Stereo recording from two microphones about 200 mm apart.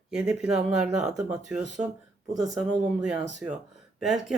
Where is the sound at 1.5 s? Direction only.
35° right (ahead or behind).